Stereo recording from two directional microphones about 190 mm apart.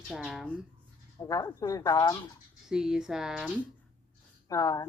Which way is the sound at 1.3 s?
20° left (ahead or behind).